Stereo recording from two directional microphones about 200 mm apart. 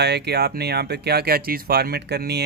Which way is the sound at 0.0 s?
55° right (ahead or behind).